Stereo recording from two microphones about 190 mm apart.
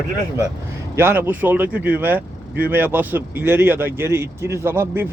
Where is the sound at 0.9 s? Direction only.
10° right (ahead or behind).